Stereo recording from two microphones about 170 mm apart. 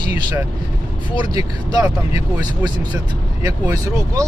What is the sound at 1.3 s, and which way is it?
Speech, 20° right (ahead or behind).